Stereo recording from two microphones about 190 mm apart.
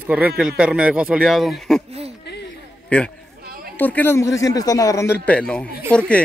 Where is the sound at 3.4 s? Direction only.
50° right (ahead or behind).